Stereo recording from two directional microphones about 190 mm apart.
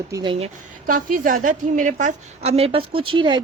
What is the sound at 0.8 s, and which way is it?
Speech, 45° right (ahead or behind).